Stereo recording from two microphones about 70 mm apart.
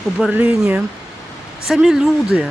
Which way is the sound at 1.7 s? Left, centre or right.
Centre.